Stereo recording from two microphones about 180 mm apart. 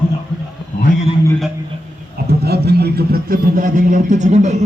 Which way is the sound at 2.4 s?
60° right (ahead or behind).